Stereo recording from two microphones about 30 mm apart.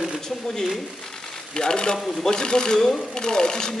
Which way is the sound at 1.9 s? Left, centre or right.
Centre.